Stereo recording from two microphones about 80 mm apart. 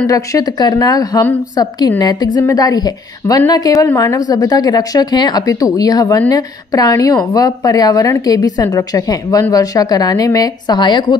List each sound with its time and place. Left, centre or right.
0.0 s a woman's voice: left